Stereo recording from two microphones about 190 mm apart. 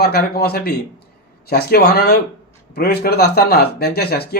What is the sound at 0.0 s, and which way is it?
Speech, 55° left (ahead or behind).